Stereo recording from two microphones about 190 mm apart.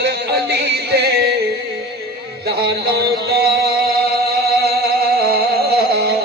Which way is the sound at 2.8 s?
55° right (ahead or behind).